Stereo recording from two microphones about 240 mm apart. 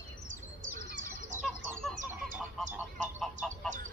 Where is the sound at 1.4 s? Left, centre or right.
Centre.